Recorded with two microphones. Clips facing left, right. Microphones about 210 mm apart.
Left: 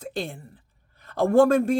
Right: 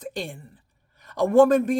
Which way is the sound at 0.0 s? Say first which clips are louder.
Left 1 dB; 15° right (ahead or behind).